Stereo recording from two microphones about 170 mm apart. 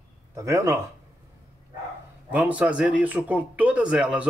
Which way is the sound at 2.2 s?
10° right (ahead or behind).